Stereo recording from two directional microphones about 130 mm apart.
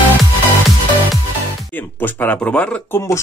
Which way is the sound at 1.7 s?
15° left (ahead or behind).